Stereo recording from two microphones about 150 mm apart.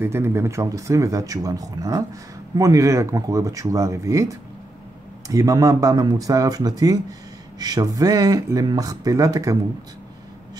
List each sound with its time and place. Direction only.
0.0 s speech: 15° right (ahead or behind)